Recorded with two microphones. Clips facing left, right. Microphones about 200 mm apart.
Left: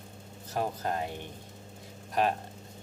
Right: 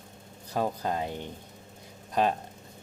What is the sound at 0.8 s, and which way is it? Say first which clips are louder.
Speech: right 2 dB; 20° right (ahead or behind).